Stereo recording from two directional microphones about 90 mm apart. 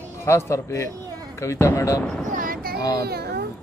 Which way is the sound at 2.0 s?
10° left (ahead or behind).